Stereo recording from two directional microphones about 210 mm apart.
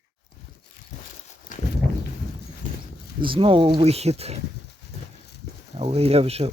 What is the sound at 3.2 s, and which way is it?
Speech, 25° right (ahead or behind).